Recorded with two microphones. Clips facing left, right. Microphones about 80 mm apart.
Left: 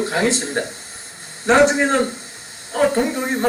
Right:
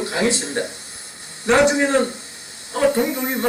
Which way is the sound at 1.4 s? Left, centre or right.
Left.